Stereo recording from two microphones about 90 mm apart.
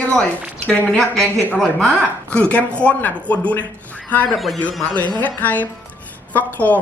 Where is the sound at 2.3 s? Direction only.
15° left (ahead or behind).